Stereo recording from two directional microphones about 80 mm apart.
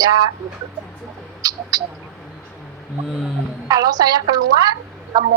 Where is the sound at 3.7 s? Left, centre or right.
Right.